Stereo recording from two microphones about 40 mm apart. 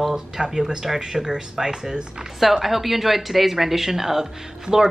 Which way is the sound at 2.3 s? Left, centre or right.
Centre.